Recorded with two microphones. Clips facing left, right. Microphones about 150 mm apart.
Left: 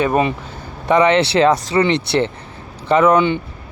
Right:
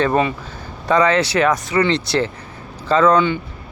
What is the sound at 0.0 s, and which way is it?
Speech, 15° left (ahead or behind).